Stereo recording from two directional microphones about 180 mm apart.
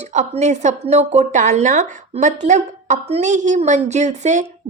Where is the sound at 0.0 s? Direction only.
40° right (ahead or behind).